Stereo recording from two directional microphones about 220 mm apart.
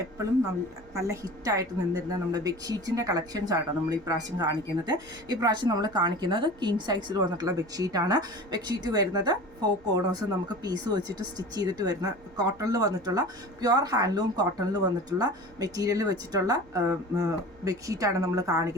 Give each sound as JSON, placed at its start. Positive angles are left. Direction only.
{"t": 0.9, "sound": "speech", "side_deg": -15}